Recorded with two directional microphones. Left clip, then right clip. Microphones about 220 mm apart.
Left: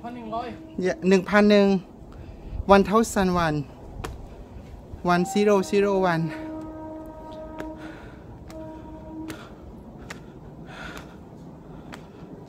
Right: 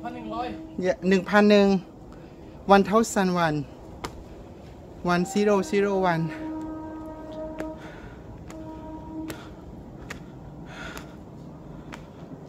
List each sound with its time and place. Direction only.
0.0 s a sound: 30° right (ahead or behind)
0.7 s speech: 20° left (ahead or behind)
5.0 s speech: 15° left (ahead or behind)
10.8 s gasp: 10° left (ahead or behind)